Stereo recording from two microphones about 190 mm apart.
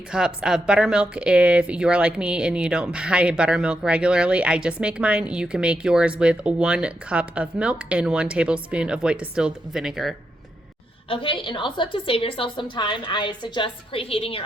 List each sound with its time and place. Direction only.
0.1 s speech: 5° right (ahead or behind)
11.1 s a woman's voice: 25° left (ahead or behind)